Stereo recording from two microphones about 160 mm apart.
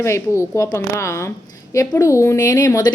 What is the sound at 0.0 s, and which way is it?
A woman's voice, 15° left (ahead or behind).